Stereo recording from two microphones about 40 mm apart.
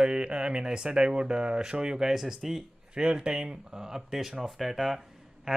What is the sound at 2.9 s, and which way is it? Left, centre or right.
Speech, right.